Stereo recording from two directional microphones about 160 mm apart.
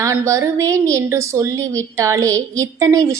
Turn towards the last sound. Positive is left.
turn(degrees=-20)  # may be behind; listen again after turning